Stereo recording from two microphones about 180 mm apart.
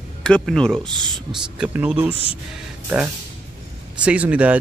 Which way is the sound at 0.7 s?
25° right (ahead or behind).